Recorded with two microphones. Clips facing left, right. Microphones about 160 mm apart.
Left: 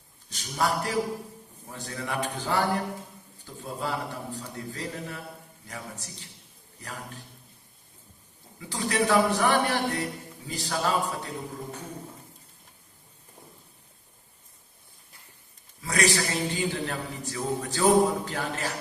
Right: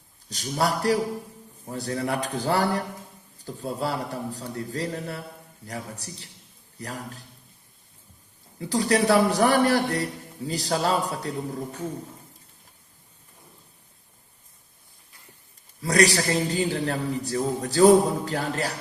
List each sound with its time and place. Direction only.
0.3 s a man's voice: 35° right (ahead or behind)
8.5 s a man's voice: 35° right (ahead or behind)
15.8 s a man's voice: 35° right (ahead or behind)